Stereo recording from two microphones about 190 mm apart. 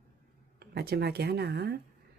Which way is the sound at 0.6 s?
60° right (ahead or behind).